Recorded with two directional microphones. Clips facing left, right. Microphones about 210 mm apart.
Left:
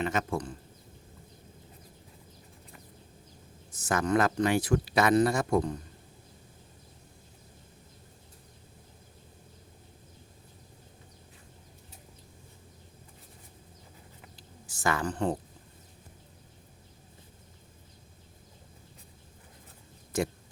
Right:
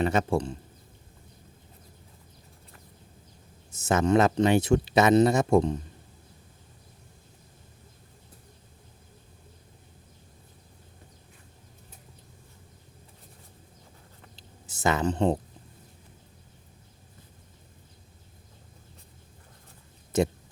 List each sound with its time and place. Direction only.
0.0 s speech: 30° right (ahead or behind)
3.7 s speech: 25° right (ahead or behind)
14.3 s a sound: 25° right (ahead or behind)
20.1 s speech: 25° right (ahead or behind)